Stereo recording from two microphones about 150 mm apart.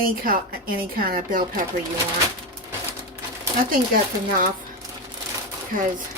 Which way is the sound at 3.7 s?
70° right (ahead or behind).